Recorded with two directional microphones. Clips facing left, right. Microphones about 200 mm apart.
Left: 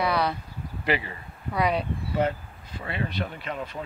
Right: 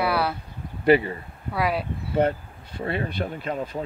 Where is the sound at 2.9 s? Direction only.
50° right (ahead or behind).